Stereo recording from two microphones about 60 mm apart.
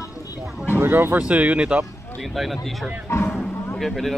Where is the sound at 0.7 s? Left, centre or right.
Right.